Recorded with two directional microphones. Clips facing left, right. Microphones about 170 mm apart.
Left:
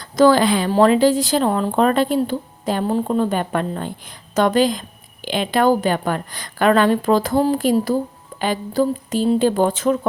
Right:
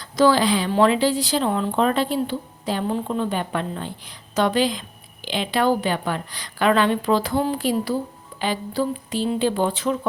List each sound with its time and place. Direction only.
0.0 s speech: 50° left (ahead or behind)